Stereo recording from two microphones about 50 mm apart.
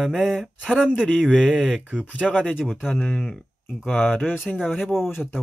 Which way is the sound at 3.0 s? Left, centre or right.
Centre.